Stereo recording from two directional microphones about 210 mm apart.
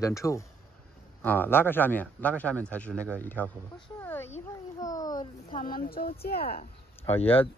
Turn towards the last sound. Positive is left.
turn(degrees=25)  # may be behind; listen again after turning